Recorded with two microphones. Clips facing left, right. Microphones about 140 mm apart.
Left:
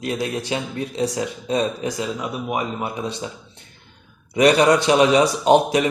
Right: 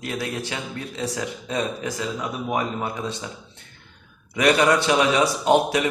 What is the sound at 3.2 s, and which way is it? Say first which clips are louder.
Speech: left 3 dB; 25° left (ahead or behind).